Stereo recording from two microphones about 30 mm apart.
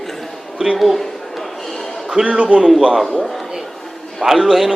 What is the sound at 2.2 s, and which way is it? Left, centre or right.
Speech, centre.